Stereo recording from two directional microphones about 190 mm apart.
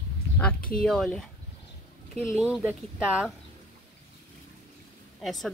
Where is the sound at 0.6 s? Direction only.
50° left (ahead or behind).